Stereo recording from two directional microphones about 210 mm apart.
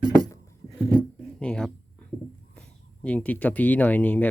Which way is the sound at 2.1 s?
5° left (ahead or behind).